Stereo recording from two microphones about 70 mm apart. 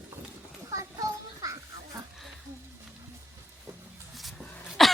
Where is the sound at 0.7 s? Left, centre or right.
Right.